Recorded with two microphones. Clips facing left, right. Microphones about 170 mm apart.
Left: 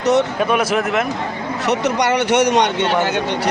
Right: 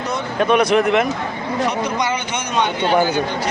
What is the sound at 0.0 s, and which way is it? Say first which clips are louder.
Speech: left 9 dB; 80° left.